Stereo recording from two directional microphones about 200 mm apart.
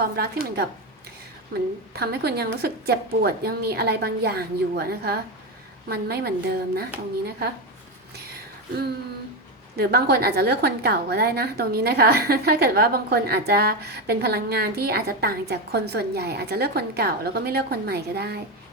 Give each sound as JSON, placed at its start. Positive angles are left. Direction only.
{"t": 0.0, "sound": "a woman's voice", "side_deg": -50}
{"t": 2.0, "sound": "a woman's voice", "side_deg": -50}
{"t": 9.7, "sound": "a woman's voice", "side_deg": -50}